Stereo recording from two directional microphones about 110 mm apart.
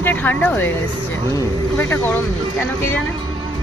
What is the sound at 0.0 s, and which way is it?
Speech, 15° left (ahead or behind).